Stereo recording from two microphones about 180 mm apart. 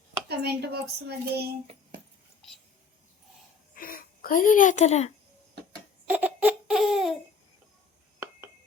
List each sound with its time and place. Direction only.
0.3 s a woman's voice: 65° right (ahead or behind)
3.8 s speech: 50° left (ahead or behind)
6.1 s baby laughter: 10° right (ahead or behind)